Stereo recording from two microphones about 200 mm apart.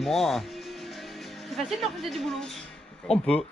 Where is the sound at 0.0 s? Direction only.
Centre (ahead or behind).